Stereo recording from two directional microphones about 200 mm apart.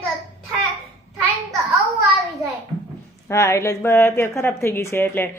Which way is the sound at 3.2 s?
15° left (ahead or behind).